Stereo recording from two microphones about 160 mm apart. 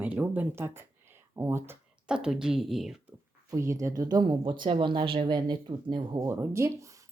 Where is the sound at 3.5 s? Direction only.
20° right (ahead or behind).